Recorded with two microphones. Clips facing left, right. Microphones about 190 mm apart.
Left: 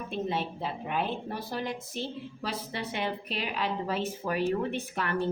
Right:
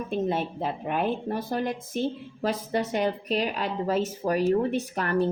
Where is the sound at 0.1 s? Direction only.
50° right (ahead or behind).